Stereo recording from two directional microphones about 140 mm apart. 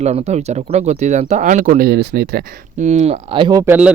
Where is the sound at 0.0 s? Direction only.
50° right (ahead or behind); by 1.9 s 70° right (ahead or behind).